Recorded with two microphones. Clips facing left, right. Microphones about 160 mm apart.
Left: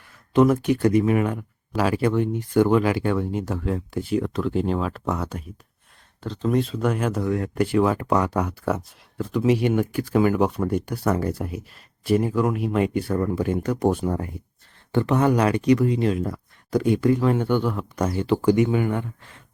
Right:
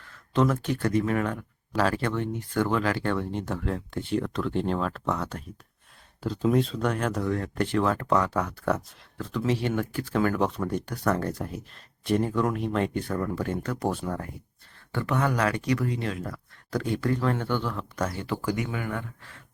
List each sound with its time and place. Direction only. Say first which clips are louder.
0.0 s speech: left 6 dB; 15° left (ahead or behind)
6.2 s speech: left 1 dB; 10° right (ahead or behind)
6.6 s speech: left 3 dB; 5° left (ahead or behind); by 19.4 s 20° left (ahead or behind)